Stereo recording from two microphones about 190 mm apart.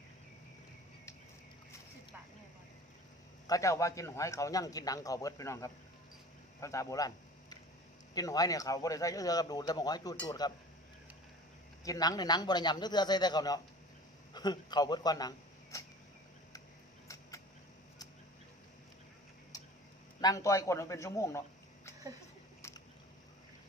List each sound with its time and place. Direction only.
3.4 s a man's voice: 15° left (ahead or behind)
8.1 s speech: 20° left (ahead or behind)
11.9 s speech: 20° left (ahead or behind)
20.2 s a man's voice: 15° left (ahead or behind)
22.6 s a sound: 15° left (ahead or behind)